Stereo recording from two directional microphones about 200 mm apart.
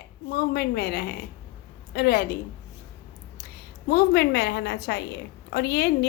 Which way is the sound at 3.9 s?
55° left (ahead or behind).